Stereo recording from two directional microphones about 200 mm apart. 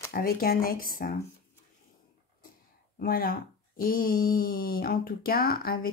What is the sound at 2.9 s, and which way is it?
Speech, 45° left (ahead or behind).